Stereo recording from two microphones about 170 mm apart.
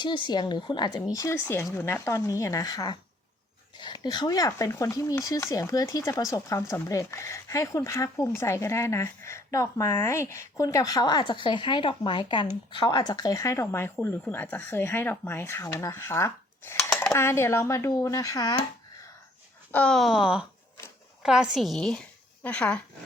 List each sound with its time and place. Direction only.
0.3 s speech: 25° left (ahead or behind)
19.7 s a woman's voice: 5° left (ahead or behind)